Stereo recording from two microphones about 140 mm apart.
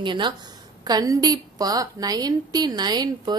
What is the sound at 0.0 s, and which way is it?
A woman's voice, 35° right (ahead or behind).